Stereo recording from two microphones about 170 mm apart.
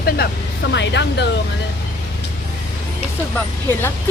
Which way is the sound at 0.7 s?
90° left.